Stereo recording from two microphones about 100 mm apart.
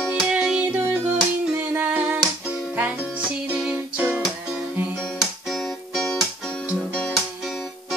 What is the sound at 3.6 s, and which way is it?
Music, 15° right (ahead or behind).